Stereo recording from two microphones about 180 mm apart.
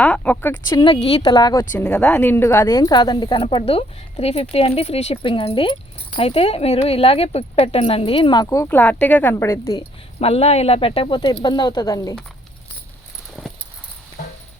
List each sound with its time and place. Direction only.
0.0 s speech: 10° left (ahead or behind)
0.7 s speech: 30° left (ahead or behind)
1.2 s speech: 20° left (ahead or behind)
1.7 s speech: 5° left (ahead or behind)
10.2 s speech: 35° left (ahead or behind)
13.4 s a sound: 5° left (ahead or behind)